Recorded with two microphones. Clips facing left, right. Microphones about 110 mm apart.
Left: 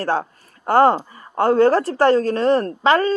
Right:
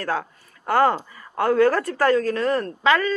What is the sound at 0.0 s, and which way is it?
Speech, 30° left (ahead or behind).